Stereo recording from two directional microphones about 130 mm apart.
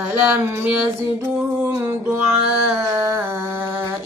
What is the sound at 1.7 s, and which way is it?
Music, 20° right (ahead or behind).